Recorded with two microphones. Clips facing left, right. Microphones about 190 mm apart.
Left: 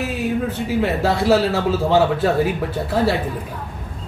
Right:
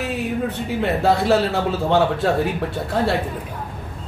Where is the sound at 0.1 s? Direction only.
Centre (ahead or behind).